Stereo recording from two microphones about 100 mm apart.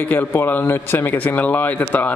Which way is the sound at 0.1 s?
20° left (ahead or behind).